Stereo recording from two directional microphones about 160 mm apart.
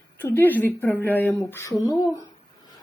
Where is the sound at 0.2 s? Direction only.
15° left (ahead or behind).